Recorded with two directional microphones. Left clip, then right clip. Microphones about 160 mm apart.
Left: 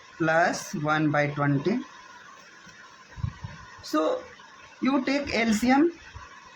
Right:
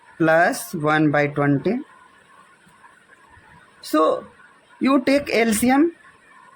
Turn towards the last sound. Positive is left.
turn(degrees=-65)  # may be behind; listen again after turning